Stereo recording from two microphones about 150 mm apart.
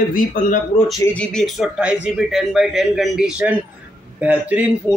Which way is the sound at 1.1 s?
5° left (ahead or behind).